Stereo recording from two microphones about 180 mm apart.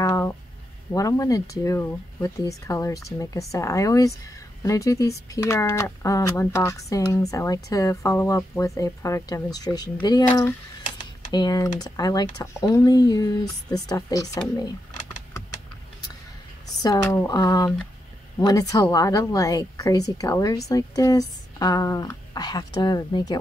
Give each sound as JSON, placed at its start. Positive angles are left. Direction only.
{"t": 0.0, "sound": "a sound", "side_deg": 15}
{"t": 0.9, "sound": "a woman's voice", "side_deg": 20}
{"t": 11.3, "sound": "a woman's voice", "side_deg": 20}
{"t": 16.8, "sound": "a woman's voice", "side_deg": 20}